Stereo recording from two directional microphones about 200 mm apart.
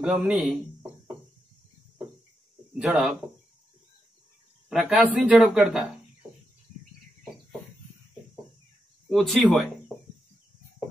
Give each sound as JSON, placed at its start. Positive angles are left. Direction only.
{"t": 0.0, "sound": "a man's voice", "side_deg": -5}
{"t": 2.7, "sound": "speech", "side_deg": -5}
{"t": 4.6, "sound": "a man's voice", "side_deg": 0}
{"t": 9.1, "sound": "a man's voice", "side_deg": 0}
{"t": 9.9, "sound": "a sound", "side_deg": 0}